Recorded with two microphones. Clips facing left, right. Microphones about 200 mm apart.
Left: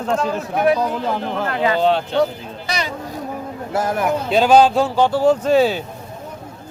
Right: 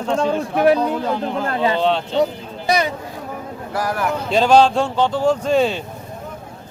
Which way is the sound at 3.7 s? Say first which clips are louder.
Left 2 dB; 25° left (ahead or behind).